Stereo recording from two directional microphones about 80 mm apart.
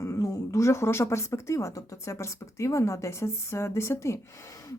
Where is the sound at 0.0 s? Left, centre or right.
Left.